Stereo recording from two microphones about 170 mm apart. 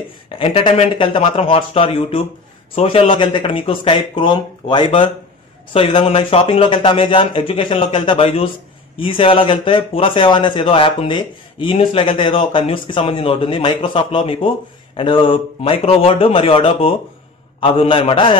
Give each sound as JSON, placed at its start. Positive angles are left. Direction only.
{"t": 0.4, "sound": "speech", "side_deg": 30}